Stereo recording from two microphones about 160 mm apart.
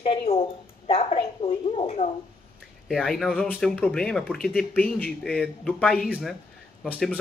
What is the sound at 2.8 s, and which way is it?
A man's voice, centre (ahead or behind).